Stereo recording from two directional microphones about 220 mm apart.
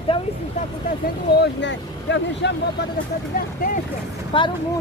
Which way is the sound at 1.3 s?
55° left (ahead or behind).